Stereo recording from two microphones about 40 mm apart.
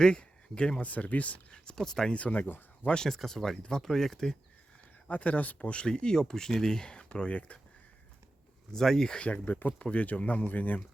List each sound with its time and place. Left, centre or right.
0.0 s speech: left
0.8 s speech: left
1.5 s speech: left
2.0 s speech: left
3.2 s speech: centre
5.0 s speech: left
5.6 s speech: left
5.9 s speech: centre; by 7.6 s left
8.7 s speech: centre
9.0 s speech: left
9.5 s speech: left
9.8 s speech: left